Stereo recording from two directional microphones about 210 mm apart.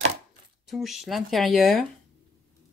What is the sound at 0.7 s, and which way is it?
Speech, centre (ahead or behind).